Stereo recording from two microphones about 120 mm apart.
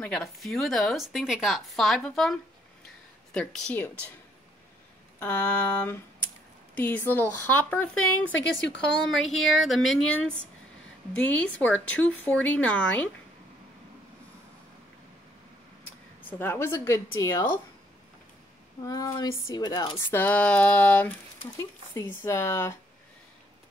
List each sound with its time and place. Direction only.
0.0 s speech: 5° left (ahead or behind)
3.3 s speech: 5° left (ahead or behind)
5.2 s speech: 15° left (ahead or behind)
8.7 s speech: 5° left (ahead or behind)
16.3 s a woman's voice: 15° left (ahead or behind)
18.8 s speech: 30° left (ahead or behind)
20.1 s speech: 15° left (ahead or behind)
22.2 s a woman's voice: 25° left (ahead or behind)